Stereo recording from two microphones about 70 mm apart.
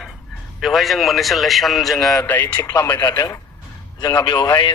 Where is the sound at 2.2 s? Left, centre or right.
Left.